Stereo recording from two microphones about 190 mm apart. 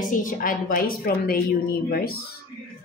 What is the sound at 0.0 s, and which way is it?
A woman's voice, 45° left (ahead or behind).